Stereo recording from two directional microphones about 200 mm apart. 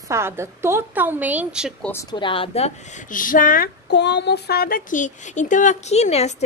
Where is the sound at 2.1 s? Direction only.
25° left (ahead or behind).